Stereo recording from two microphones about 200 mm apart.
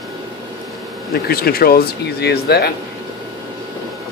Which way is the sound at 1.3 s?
50° left (ahead or behind).